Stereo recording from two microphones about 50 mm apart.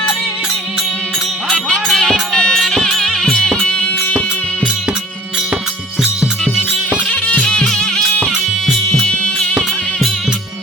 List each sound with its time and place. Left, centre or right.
1.5 s music: centre
1.9 s music: centre
3.2 s music: centre
7.3 s music: centre